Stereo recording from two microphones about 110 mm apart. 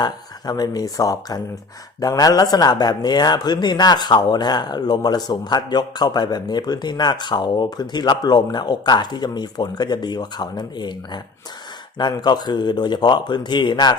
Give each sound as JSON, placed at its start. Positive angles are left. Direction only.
{"t": 0.0, "sound": "speech", "side_deg": 35}